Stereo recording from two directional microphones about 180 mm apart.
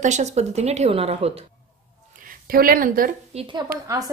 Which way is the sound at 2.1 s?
50° right (ahead or behind).